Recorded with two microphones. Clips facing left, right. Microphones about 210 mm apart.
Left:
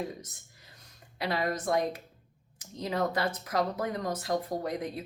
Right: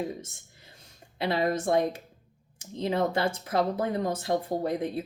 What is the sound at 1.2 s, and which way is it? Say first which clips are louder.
Speech: right 4 dB; 25° right (ahead or behind).